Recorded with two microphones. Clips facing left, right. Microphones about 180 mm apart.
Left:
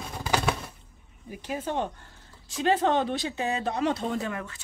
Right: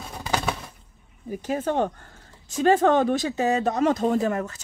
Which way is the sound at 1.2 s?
45° right (ahead or behind).